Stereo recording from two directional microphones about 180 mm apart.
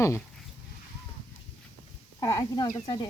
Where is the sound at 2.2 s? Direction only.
20° left (ahead or behind).